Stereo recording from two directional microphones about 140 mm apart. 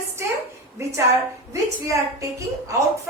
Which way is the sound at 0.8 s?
20° right (ahead or behind).